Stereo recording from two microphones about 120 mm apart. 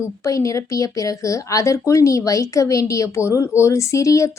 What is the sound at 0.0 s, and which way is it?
A woman's voice, 25° left (ahead or behind).